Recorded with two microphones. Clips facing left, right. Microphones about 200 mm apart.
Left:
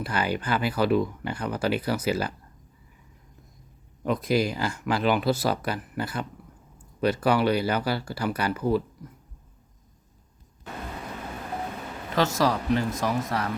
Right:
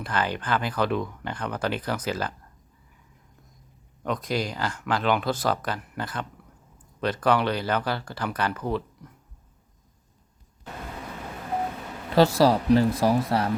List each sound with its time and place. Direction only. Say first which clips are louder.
0.0 s speech: left 1 dB; 10° left (ahead or behind)
4.0 s speech: left 4 dB; 5° left (ahead or behind)
12.1 s speech: right 5 dB; 30° right (ahead or behind)